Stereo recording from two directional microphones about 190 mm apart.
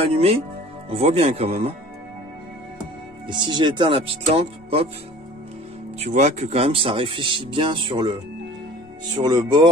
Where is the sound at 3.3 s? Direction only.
25° right (ahead or behind).